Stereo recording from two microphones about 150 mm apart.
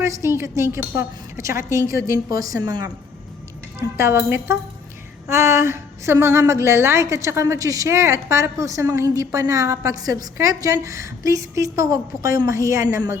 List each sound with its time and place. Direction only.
0.0 s a woman's voice: 20° right (ahead or behind)
3.9 s a woman's voice: 15° right (ahead or behind)